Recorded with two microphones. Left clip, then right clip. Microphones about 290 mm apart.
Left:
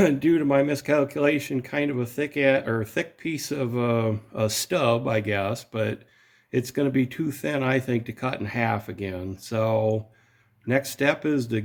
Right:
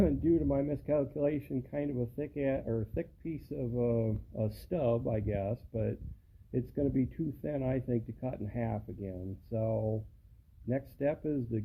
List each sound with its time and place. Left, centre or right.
0.0 s speech: centre
3.3 s speech: left
4.4 s speech: centre
10.7 s speech: centre